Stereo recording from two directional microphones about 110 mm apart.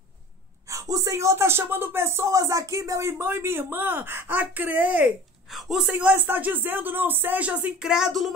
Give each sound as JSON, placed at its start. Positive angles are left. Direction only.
{"t": 0.7, "sound": "speech", "side_deg": -30}
{"t": 5.5, "sound": "speech", "side_deg": 0}